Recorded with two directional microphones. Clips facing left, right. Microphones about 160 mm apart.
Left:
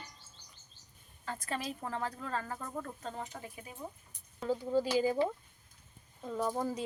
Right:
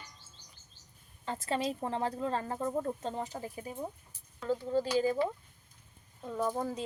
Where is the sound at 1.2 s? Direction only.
25° right (ahead or behind).